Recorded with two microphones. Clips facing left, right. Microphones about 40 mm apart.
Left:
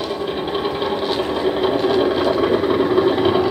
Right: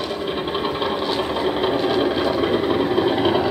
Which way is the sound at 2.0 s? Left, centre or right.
Centre.